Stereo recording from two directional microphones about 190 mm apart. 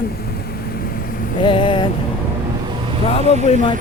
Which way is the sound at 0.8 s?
50° left (ahead or behind).